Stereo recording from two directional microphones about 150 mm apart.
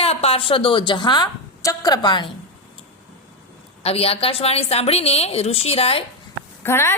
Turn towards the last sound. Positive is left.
turn(degrees=15)  # may be behind; listen again after turning